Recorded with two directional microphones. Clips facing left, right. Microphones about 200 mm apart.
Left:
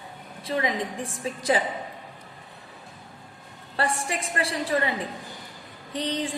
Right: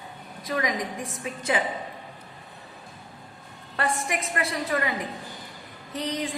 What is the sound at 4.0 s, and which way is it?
Speech, 30° left (ahead or behind).